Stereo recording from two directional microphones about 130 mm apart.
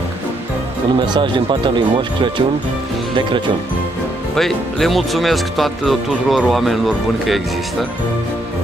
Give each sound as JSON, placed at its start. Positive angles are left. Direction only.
{"t": 0.9, "sound": "speech", "side_deg": -35}
{"t": 4.4, "sound": "speech", "side_deg": 0}